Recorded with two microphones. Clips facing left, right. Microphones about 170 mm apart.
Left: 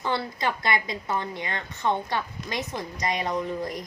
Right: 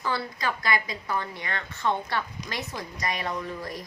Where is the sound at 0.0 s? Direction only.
25° left (ahead or behind).